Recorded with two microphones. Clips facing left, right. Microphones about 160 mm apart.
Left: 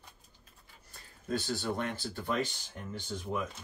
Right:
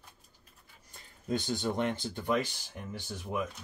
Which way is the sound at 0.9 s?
20° right (ahead or behind).